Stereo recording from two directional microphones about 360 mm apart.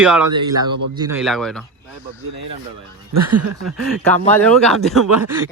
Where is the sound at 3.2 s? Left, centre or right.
Right.